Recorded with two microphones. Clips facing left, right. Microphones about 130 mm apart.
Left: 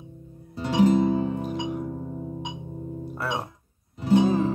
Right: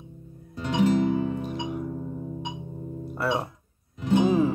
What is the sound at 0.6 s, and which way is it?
Music, 35° left (ahead or behind).